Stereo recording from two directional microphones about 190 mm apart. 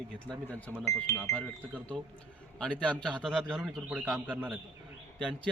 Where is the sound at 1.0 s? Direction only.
10° left (ahead or behind).